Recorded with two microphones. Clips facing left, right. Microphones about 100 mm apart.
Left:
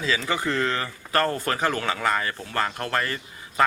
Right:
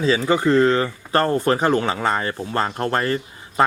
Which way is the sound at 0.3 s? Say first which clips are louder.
Right 12 dB; 25° right (ahead or behind).